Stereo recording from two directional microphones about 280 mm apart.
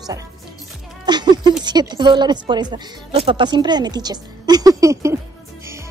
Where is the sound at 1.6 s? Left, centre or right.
Centre.